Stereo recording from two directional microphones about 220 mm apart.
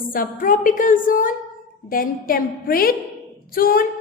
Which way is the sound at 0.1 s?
40° left (ahead or behind).